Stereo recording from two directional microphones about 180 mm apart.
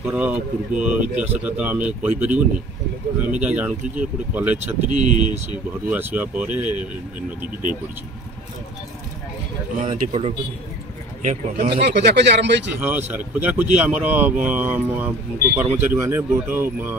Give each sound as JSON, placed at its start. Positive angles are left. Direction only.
{"t": 0.0, "sound": "speech", "side_deg": -5}
{"t": 9.8, "sound": "speech", "side_deg": -35}
{"t": 11.7, "sound": "speech", "side_deg": -70}
{"t": 12.8, "sound": "speech", "side_deg": -10}